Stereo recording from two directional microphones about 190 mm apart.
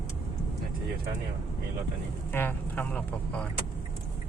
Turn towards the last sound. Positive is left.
turn(degrees=10)  # may be behind; listen again after turning